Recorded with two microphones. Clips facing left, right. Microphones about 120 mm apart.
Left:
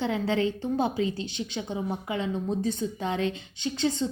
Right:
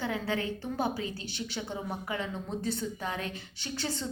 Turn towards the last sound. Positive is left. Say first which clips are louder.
# left 8 dB
turn(degrees=20)  # may be behind; listen again after turning